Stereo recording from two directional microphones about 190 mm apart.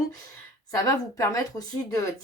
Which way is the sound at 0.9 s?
15° left (ahead or behind).